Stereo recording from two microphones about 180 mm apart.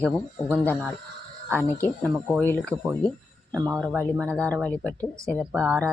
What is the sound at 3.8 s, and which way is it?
Speech, 5° left (ahead or behind).